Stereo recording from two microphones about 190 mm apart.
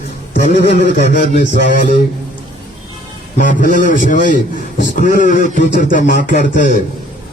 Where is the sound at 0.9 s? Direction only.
40° left (ahead or behind).